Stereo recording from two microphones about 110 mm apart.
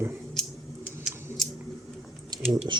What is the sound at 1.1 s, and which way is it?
Scissors, centre (ahead or behind).